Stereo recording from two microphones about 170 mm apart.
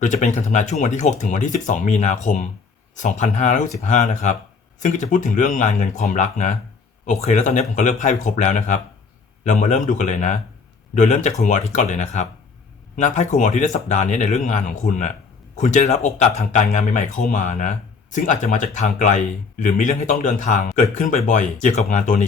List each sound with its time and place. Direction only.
0.0 s speech: 45° left (ahead or behind)